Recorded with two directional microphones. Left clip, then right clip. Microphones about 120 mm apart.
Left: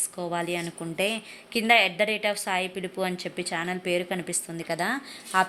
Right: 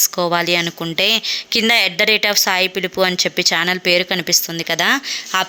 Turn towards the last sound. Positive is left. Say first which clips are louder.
# right 6 dB
turn(degrees=-20)  # may be behind; listen again after turning